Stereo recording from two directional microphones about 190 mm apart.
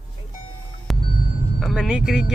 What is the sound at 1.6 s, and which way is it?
Speech, centre (ahead or behind).